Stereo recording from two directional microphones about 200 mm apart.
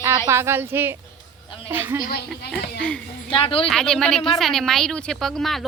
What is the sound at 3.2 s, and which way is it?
Speech, 25° left (ahead or behind).